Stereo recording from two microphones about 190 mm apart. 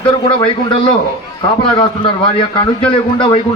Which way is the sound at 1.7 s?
25° left (ahead or behind).